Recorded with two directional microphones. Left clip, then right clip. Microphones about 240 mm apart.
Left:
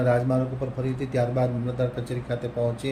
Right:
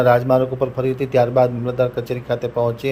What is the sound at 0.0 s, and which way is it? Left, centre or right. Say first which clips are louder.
Speech: right 9 dB; right.